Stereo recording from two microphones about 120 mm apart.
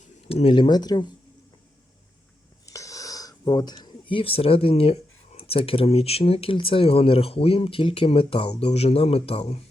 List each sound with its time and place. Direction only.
0.3 s speech: 50° left (ahead or behind); by 1.0 s 35° left (ahead or behind)
2.6 s speech: 25° left (ahead or behind); by 9.6 s 55° left (ahead or behind)